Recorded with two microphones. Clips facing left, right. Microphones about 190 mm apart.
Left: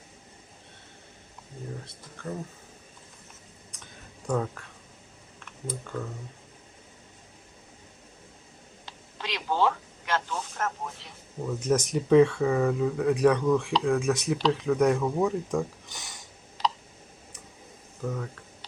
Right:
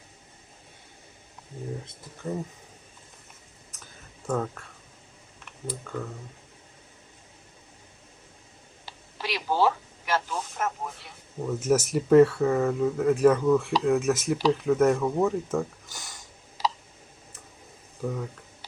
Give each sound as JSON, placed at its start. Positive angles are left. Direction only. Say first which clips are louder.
{"t": 1.8, "sound": "speech", "louder": "right 3 dB", "side_deg": -20}
{"t": 4.3, "sound": "speech", "louder": "even", "side_deg": 0}
{"t": 8.9, "sound": "telephone", "louder": "right 3 dB", "side_deg": -10}
{"t": 11.4, "sound": "speech", "louder": "right 2 dB", "side_deg": -5}
{"t": 18.0, "sound": "speech", "louder": "right 2 dB", "side_deg": -5}